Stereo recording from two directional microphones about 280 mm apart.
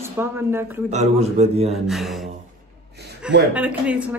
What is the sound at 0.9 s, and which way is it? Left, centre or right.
Speech, right.